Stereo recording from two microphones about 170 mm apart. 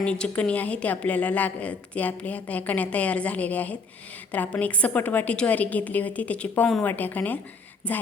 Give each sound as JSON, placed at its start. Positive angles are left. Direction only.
{"t": 0.0, "sound": "a woman's voice", "side_deg": 5}